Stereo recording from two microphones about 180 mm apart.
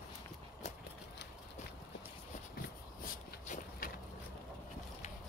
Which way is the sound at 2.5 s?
55° left (ahead or behind).